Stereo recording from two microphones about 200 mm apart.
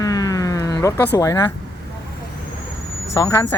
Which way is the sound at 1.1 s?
15° left (ahead or behind).